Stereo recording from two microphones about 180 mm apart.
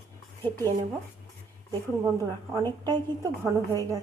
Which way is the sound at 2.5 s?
20° right (ahead or behind).